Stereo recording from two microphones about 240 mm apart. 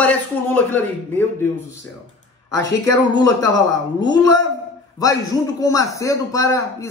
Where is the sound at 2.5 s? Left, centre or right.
Centre.